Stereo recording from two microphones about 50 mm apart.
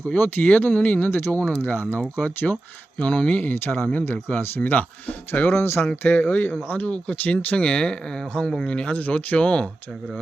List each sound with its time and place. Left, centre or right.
0.4 s speech: left
0.8 s speech: left
3.0 s speech: left
3.5 s speech: left
6.0 s speech: left; by 8.3 s centre
8.3 s speech: left